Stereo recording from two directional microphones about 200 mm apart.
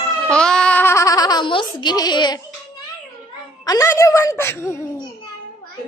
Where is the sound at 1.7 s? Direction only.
20° left (ahead or behind).